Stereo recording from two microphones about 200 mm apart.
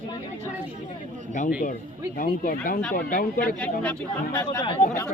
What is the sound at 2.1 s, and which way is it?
Speech, 45° left (ahead or behind).